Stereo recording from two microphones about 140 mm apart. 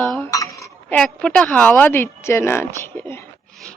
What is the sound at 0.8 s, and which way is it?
Speech, 10° left (ahead or behind).